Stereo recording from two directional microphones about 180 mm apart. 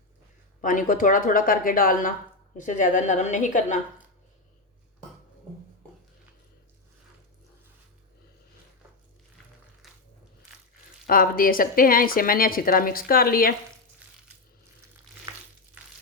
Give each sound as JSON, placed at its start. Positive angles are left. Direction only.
{"t": 0.6, "sound": "speech", "side_deg": 50}
{"t": 9.8, "sound": "a sound", "side_deg": 0}
{"t": 11.0, "sound": "speech", "side_deg": 50}